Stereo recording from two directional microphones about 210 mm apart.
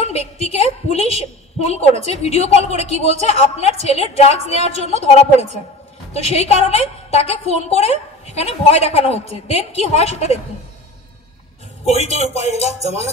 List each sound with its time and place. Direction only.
0.0 s a woman's voice: 30° left (ahead or behind)
6.1 s a woman's voice: 30° left (ahead or behind)
11.8 s a woman's voice: 30° left (ahead or behind)